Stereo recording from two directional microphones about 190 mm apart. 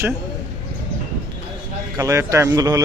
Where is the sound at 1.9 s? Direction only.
15° right (ahead or behind).